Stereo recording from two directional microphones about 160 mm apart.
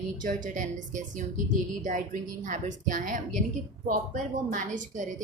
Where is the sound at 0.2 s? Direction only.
55° right (ahead or behind).